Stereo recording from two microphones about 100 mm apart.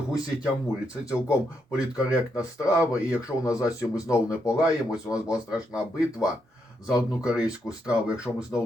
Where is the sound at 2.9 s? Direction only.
35° left (ahead or behind).